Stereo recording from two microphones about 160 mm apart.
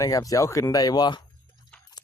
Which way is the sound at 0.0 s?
20° left (ahead or behind).